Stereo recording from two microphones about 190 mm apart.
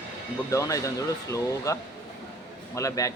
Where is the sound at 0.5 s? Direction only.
15° left (ahead or behind).